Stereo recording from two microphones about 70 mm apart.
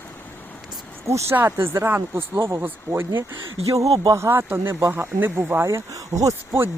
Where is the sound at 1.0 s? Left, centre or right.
Right.